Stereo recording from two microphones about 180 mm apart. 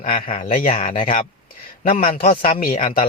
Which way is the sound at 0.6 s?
50° left (ahead or behind).